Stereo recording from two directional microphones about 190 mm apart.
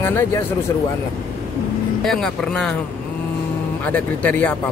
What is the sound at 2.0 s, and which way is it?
Speech, 5° left (ahead or behind).